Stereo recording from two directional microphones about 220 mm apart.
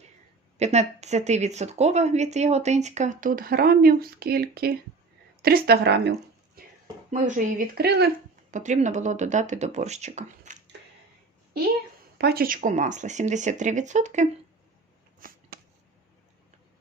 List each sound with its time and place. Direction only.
0.6 s a woman's voice: 30° right (ahead or behind); by 6.1 s 50° right (ahead or behind)
7.1 s speech: 35° right (ahead or behind)
8.4 s a woman's voice: 35° right (ahead or behind)
12.1 s a woman's voice: 45° right (ahead or behind)